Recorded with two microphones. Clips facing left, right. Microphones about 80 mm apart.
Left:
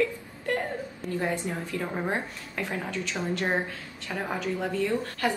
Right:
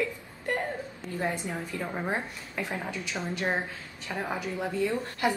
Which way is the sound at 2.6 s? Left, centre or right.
Centre.